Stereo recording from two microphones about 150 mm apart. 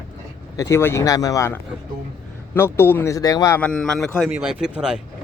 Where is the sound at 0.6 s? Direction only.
15° left (ahead or behind).